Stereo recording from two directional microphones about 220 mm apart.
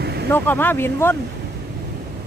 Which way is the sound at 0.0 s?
50° right (ahead or behind).